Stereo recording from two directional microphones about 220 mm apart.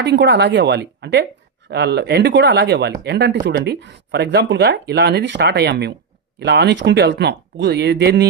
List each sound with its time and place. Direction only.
0.0 s speech: 50° right (ahead or behind)